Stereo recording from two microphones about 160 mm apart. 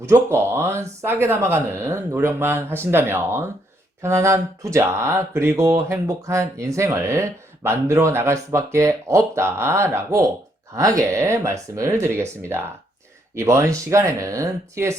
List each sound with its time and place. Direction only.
0.0 s speech: 15° right (ahead or behind)
13.3 s speech: 15° right (ahead or behind)